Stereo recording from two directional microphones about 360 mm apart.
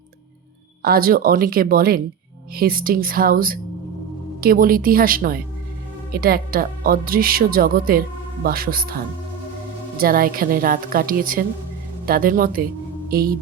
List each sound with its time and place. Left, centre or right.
0.8 s speech: right
10.0 s speech: right
13.1 s music: right